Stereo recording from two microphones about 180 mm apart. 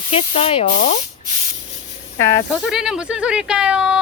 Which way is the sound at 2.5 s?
Centre (ahead or behind).